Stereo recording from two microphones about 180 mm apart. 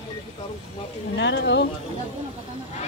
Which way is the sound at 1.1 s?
75° left (ahead or behind).